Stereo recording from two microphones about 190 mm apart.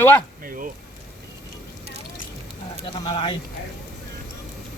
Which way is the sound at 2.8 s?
25° left (ahead or behind).